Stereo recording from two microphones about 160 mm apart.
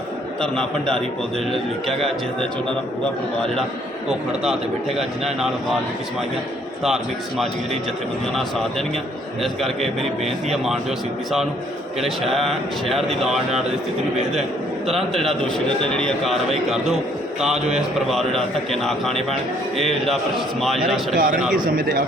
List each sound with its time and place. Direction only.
0.4 s a man's voice: 5° left (ahead or behind)
4.9 s a man's voice: centre (ahead or behind)
6.8 s a man's voice: centre (ahead or behind)
9.4 s a man's voice: centre (ahead or behind)
11.9 s a man's voice: centre (ahead or behind)
14.8 s a man's voice: centre (ahead or behind)
21.5 s a man's voice: 60° right (ahead or behind)